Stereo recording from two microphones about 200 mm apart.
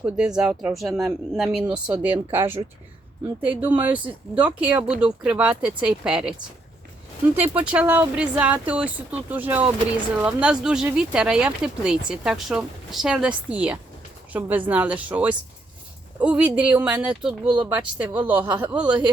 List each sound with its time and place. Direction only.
0.0 s speech: 5° right (ahead or behind)
7.3 s speech: 10° right (ahead or behind)